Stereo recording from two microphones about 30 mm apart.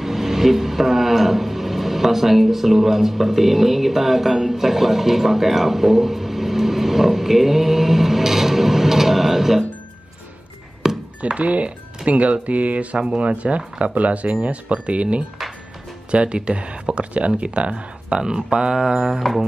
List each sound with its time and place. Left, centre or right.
0.0 s a sound: centre
10.8 s chop: centre
11.3 s speech: right
19.2 s music: centre